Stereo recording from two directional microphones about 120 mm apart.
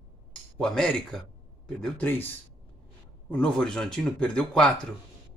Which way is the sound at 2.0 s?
15° left (ahead or behind).